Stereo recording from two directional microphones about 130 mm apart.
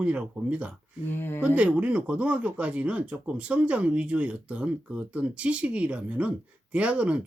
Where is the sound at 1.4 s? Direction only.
10° right (ahead or behind).